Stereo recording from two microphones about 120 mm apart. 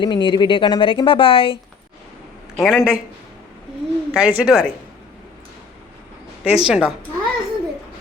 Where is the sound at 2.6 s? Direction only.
Centre (ahead or behind).